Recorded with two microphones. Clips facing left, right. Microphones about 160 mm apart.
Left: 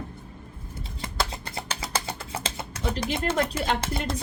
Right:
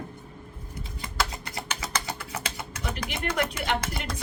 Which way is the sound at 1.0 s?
25° left (ahead or behind).